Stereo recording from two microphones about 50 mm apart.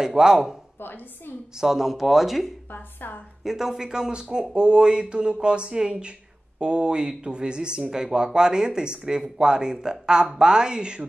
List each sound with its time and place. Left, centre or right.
0.0 s speech: centre
0.7 s a woman's voice: left
1.6 s speech: centre
2.7 s a woman's voice: left
3.4 s speech: centre